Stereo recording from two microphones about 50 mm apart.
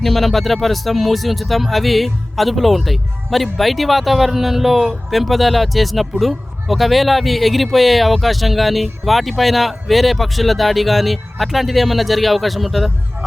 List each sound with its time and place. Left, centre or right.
0.0 s speech: centre